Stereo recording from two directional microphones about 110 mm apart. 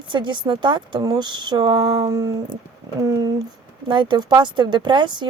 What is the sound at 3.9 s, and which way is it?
A woman's voice, 45° right (ahead or behind).